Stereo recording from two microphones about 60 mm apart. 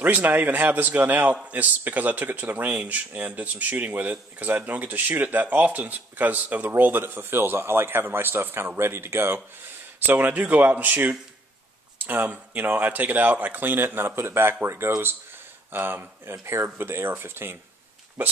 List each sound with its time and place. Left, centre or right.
0.0 s a man's voice: right
15.7 s a man's voice: right
18.2 s a man's voice: right